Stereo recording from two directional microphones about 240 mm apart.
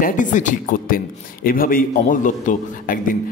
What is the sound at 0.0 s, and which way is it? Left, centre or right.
A man's voice, left.